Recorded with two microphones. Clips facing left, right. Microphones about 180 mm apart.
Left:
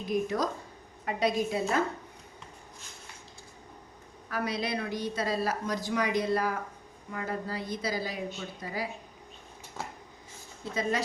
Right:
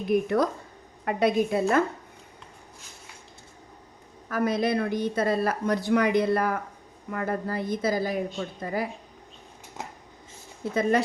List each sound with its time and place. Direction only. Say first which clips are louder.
0.1 s a woman's voice: right 6 dB; 60° right (ahead or behind)
4.3 s a woman's voice: right 7 dB; 50° right (ahead or behind)
9.8 s a sound: right 1 dB; 20° right (ahead or behind)
10.6 s speech: right 7 dB; 55° right (ahead or behind)